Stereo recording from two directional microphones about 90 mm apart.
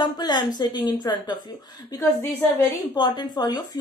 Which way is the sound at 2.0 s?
25° left (ahead or behind).